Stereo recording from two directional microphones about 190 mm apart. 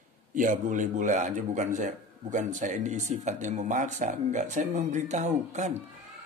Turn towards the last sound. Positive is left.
turn(degrees=-40)  # may be behind; listen again after turning